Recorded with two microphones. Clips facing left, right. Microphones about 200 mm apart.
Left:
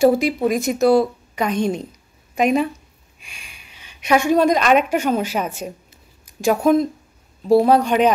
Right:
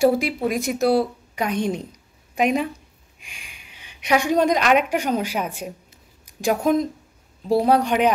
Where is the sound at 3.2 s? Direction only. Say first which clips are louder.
Left 1 dB; 15° right (ahead or behind).